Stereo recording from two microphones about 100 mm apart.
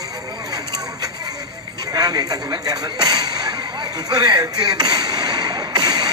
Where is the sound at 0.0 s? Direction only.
40° right (ahead or behind).